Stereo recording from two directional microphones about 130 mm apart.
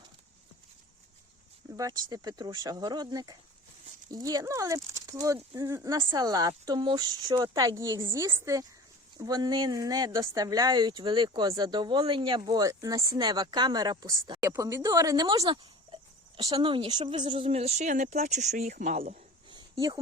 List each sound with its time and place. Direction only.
1.7 s a woman's voice: 30° right (ahead or behind)
16.6 s speech: 40° right (ahead or behind); by 19.2 s 65° right (ahead or behind)